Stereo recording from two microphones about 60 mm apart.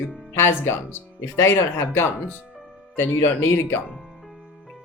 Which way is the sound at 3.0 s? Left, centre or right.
Left.